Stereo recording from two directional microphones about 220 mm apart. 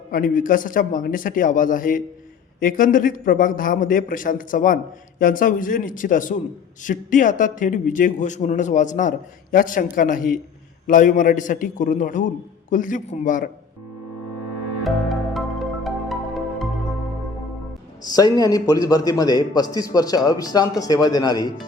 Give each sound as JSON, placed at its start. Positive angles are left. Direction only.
{"t": 0.1, "sound": "a man's voice", "side_deg": 40}
{"t": 14.8, "sound": "music", "side_deg": 0}
{"t": 18.0, "sound": "a man's voice", "side_deg": 15}